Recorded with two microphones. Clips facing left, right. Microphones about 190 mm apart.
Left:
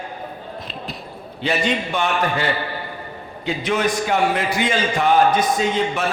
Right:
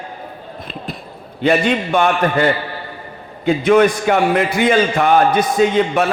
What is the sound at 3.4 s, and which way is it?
A man's voice, 55° right (ahead or behind).